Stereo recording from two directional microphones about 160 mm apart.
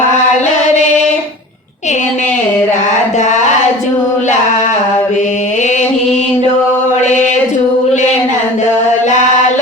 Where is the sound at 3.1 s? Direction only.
50° left (ahead or behind).